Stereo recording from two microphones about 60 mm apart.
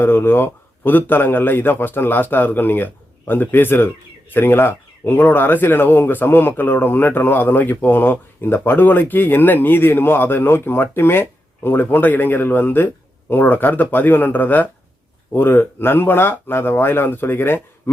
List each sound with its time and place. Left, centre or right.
0.0 s speech: left